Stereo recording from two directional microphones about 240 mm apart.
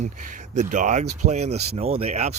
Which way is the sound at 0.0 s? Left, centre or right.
Right.